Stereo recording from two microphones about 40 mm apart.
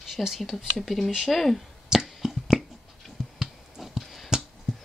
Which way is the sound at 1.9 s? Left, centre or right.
Centre.